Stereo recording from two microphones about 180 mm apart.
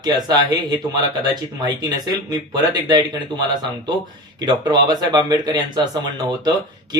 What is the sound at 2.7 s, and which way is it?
Speech, 25° right (ahead or behind).